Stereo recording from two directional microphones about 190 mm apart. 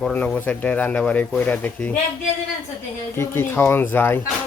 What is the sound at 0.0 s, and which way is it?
Speech, 5° left (ahead or behind).